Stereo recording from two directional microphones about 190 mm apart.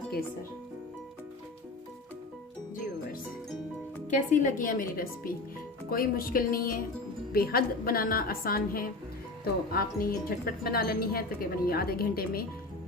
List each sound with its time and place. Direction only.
4.1 s speech: 40° left (ahead or behind)